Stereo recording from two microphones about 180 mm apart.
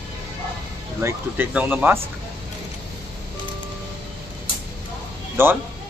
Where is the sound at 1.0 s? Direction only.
15° right (ahead or behind).